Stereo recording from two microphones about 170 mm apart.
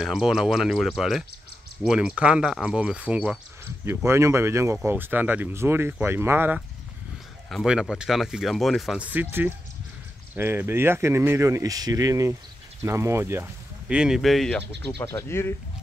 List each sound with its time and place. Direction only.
0.0 s speech: centre (ahead or behind)
7.4 s speech: centre (ahead or behind)
15.0 s speech: 15° left (ahead or behind)